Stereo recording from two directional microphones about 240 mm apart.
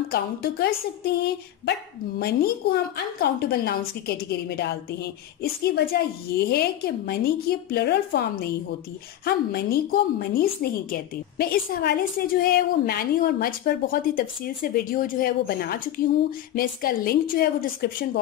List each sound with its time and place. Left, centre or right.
0.1 s a woman's voice: left